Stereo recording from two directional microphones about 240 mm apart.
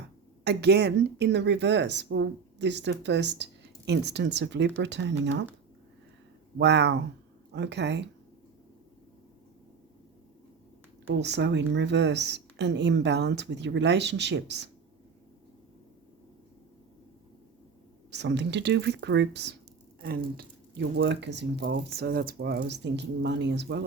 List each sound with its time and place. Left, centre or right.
0.4 s speech: right
6.6 s speech: right
11.2 s speech: right
18.1 s speech: right